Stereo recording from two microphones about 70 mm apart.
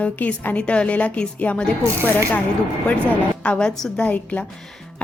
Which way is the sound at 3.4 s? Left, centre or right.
Centre.